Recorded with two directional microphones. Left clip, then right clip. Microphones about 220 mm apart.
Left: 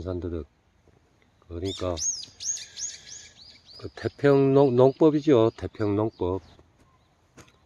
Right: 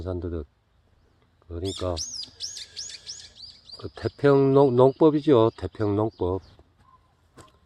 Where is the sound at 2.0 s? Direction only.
30° right (ahead or behind).